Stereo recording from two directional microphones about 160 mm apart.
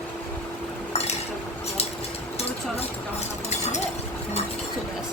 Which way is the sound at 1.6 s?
40° left (ahead or behind).